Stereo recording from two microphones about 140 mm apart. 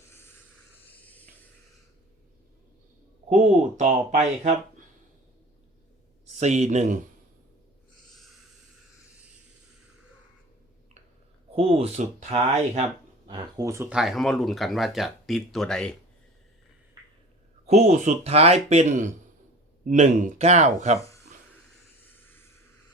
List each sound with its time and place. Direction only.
0.1 s a sound: 15° left (ahead or behind)
3.2 s speech: 60° right (ahead or behind)
6.4 s speech: 55° right (ahead or behind)
11.5 s speech: 45° right (ahead or behind)
13.2 s speech: 30° right (ahead or behind)
13.9 s speech: centre (ahead or behind)
17.7 s speech: 55° right (ahead or behind)
22.0 s hiss: 15° left (ahead or behind)